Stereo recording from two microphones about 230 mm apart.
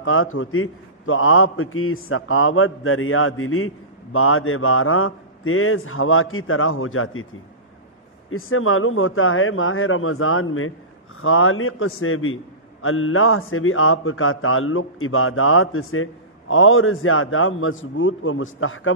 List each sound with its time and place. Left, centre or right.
0.0 s a man's voice: left
8.3 s a man's voice: left